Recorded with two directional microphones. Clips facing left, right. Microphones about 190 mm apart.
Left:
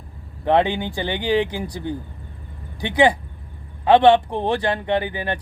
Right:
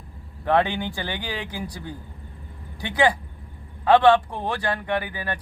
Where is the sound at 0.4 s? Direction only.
20° left (ahead or behind).